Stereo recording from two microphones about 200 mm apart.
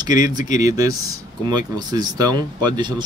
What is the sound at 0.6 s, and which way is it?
Speech, 15° right (ahead or behind).